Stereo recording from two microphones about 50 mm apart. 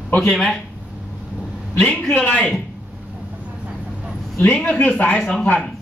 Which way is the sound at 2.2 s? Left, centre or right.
Left.